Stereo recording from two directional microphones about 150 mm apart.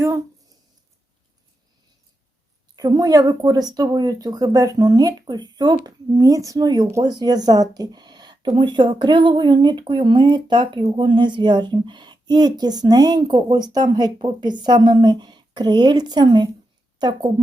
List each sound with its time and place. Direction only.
2.7 s speech: 25° right (ahead or behind)